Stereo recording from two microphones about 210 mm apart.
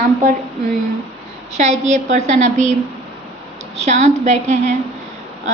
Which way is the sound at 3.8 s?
35° right (ahead or behind).